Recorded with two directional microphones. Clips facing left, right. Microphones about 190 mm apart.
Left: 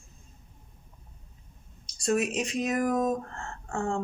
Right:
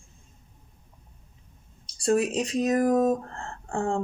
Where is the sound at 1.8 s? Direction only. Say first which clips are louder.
Right 3 dB; 30° right (ahead or behind).